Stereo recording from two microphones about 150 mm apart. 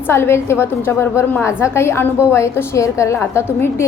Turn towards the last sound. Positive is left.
turn(degrees=15)  # may be behind; listen again after turning